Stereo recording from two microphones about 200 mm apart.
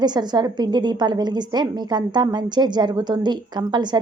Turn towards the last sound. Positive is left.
turn(degrees=-20)  # may be behind; listen again after turning